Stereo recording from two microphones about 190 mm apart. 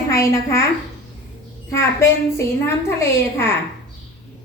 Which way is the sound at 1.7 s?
15° left (ahead or behind).